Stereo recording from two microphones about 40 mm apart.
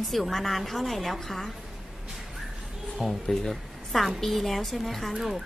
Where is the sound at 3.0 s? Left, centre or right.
Centre.